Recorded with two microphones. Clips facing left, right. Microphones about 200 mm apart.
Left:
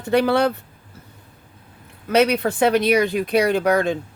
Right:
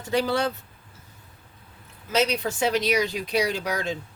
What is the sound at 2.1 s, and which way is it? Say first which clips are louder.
Speech: left 7 dB; 60° left (ahead or behind).